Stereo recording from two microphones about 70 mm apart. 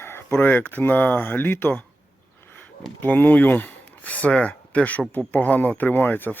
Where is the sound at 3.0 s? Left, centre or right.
Left.